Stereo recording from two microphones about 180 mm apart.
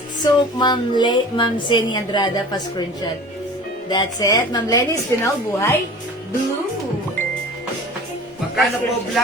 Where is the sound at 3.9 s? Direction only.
20° left (ahead or behind).